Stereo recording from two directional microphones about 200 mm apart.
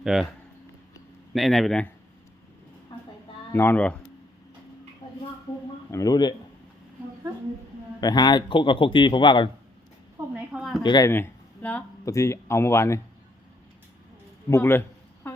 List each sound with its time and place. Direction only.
0.0 s speech: centre (ahead or behind)
1.3 s speech: centre (ahead or behind)
2.9 s a sound: 25° left (ahead or behind)
3.5 s speech: 10° left (ahead or behind)
5.9 s speech: 15° left (ahead or behind)
8.0 s speech: 20° left (ahead or behind)
10.2 s a sound: 5° right (ahead or behind)
10.8 s speech: 20° left (ahead or behind)
14.5 s a sound: 10° left (ahead or behind)